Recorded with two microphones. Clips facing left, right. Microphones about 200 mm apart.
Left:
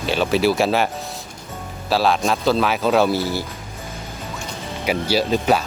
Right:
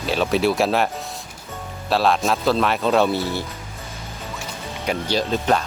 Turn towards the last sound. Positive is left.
turn(degrees=5)  # may be behind; listen again after turning